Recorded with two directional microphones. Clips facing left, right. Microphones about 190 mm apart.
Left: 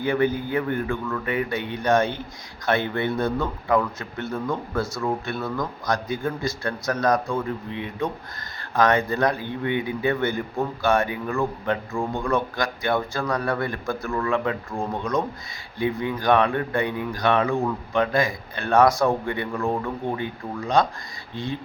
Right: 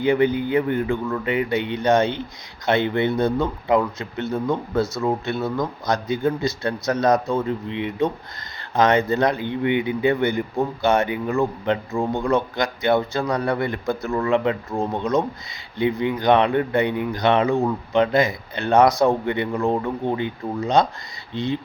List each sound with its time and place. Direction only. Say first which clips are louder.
0.0 s speech: right 4 dB; 20° right (ahead or behind)